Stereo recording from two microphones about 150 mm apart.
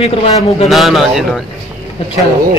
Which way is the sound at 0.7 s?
Centre (ahead or behind).